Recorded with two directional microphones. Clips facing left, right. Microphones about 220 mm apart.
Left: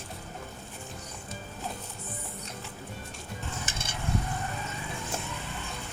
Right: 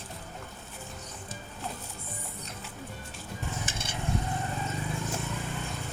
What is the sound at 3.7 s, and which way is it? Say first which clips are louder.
Stir: right 1 dB; 45° left (ahead or behind).